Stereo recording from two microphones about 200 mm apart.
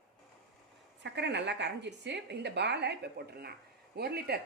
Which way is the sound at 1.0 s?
60° right (ahead or behind).